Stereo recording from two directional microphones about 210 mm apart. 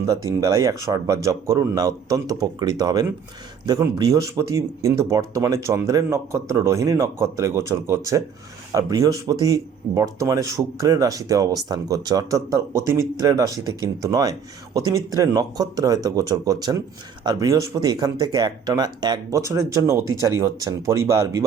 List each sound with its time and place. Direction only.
0.3 s speech: 15° right (ahead or behind)